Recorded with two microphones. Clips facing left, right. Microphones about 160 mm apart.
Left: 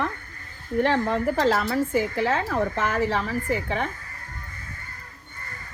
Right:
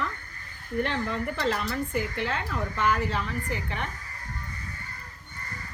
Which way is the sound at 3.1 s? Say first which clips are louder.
Left 6 dB; 75° left (ahead or behind).